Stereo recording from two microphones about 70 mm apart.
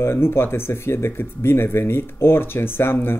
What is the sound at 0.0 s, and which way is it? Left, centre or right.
Speech, left.